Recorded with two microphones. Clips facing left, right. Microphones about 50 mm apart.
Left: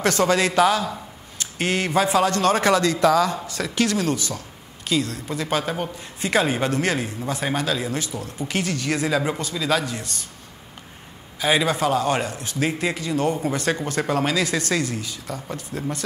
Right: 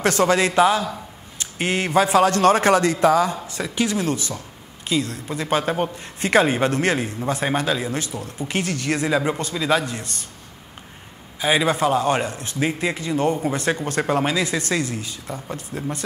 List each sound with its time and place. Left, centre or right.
0.0 s a man's voice: right
2.0 s a man's voice: right; by 4.0 s centre
4.1 s a man's voice: right
9.5 s a man's voice: right
9.8 s a man's voice: right
11.6 s a man's voice: right